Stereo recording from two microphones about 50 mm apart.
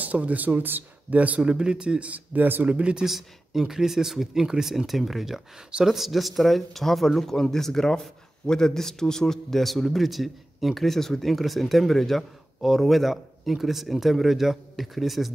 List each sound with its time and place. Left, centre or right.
0.0 s speech: right
1.4 s a man's voice: centre; by 2.7 s right
2.7 s a man's voice: right
3.1 s speech: centre